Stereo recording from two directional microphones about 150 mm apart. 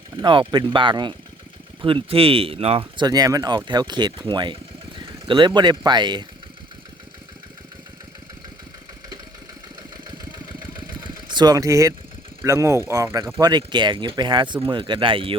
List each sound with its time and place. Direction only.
0.2 s speech: 30° right (ahead or behind)
3.1 s speech: 25° right (ahead or behind)
4.9 s vehicle: 35° right (ahead or behind)
5.5 s speech: 30° right (ahead or behind)
11.3 s speech: 30° right (ahead or behind)